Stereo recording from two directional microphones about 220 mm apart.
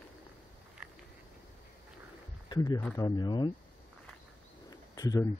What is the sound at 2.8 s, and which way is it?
Speech, 5° left (ahead or behind).